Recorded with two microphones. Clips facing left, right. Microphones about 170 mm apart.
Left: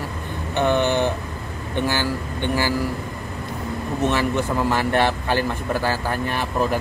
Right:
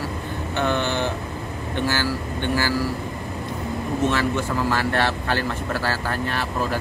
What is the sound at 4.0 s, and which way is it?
Speech, 15° left (ahead or behind).